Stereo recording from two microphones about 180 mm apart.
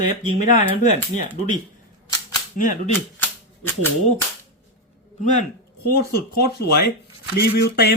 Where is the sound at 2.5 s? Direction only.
45° left (ahead or behind).